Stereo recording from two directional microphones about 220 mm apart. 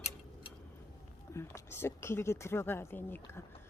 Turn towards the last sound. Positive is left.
turn(degrees=10)  # may be behind; listen again after turning